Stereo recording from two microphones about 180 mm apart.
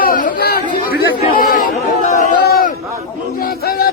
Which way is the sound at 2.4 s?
60° left (ahead or behind).